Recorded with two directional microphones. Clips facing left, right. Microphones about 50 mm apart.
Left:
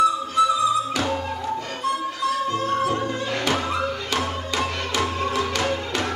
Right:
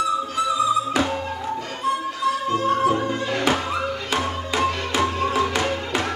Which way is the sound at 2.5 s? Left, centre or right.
Right.